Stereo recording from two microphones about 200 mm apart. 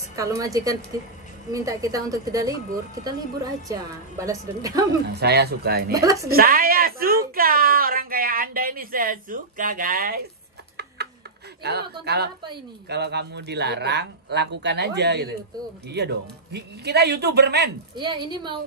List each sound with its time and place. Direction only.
0.1 s a woman's voice: 15° right (ahead or behind)
5.0 s speech: 55° right (ahead or behind)
5.9 s a woman's voice: 15° right (ahead or behind)
6.2 s speech: 45° right (ahead or behind)
11.6 s a man's voice: 55° right (ahead or behind)
17.9 s a woman's voice: 20° right (ahead or behind)